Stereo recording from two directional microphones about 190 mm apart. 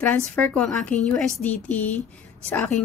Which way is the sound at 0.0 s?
10° left (ahead or behind).